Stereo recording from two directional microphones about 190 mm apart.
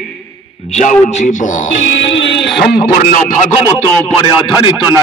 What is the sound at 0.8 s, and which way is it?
Speech, 40° left (ahead or behind).